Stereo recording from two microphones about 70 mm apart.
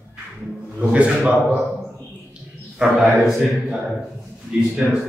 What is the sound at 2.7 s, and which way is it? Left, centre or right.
A man's voice, centre.